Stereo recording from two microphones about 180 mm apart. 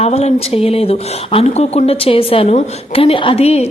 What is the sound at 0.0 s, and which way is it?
Speech, 35° left (ahead or behind).